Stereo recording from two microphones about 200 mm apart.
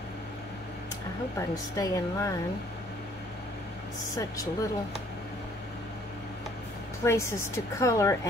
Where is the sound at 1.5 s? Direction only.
15° left (ahead or behind).